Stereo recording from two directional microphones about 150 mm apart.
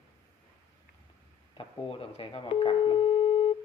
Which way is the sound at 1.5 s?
40° left (ahead or behind).